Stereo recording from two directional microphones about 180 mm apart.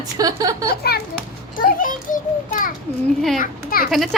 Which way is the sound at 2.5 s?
50° left (ahead or behind).